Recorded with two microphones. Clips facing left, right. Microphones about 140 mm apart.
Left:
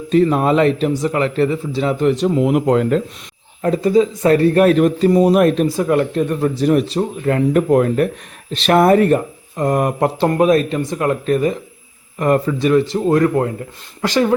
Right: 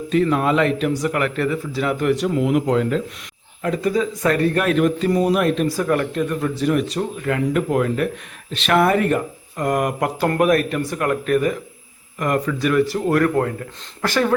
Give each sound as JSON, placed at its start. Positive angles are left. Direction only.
{"t": 0.1, "sound": "speech", "side_deg": 35}
{"t": 2.4, "sound": "speech", "side_deg": 45}
{"t": 3.6, "sound": "speech", "side_deg": 35}
{"t": 5.6, "sound": "speech", "side_deg": 20}
{"t": 6.1, "sound": "speech", "side_deg": 35}